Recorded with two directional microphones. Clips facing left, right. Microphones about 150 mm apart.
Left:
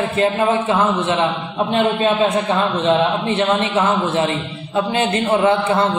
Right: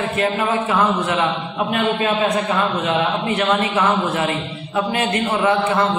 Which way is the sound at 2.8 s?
25° left (ahead or behind).